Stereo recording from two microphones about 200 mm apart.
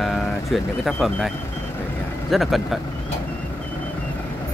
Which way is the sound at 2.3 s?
Centre (ahead or behind).